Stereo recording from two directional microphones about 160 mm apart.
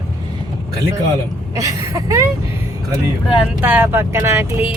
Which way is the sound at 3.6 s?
10° right (ahead or behind).